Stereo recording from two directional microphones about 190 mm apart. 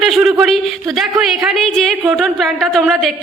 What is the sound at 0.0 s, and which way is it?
A woman's voice, centre (ahead or behind).